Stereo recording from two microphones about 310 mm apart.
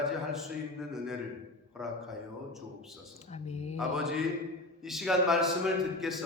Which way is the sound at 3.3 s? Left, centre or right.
Left.